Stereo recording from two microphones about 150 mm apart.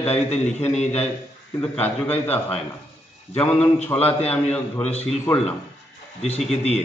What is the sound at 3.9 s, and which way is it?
Speech, 15° left (ahead or behind).